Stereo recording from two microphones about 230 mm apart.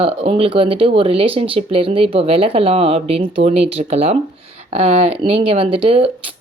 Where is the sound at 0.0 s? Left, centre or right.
Right.